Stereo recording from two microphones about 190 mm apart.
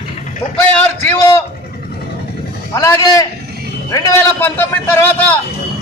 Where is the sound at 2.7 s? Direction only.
15° left (ahead or behind).